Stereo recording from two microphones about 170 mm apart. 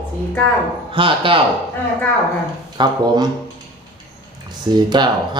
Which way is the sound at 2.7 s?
25° right (ahead or behind).